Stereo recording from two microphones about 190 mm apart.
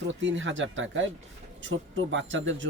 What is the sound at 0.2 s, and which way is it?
Speech, 80° right.